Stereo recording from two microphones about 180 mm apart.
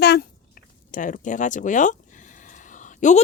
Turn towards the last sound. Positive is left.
turn(degrees=45)  # may be behind; listen again after turning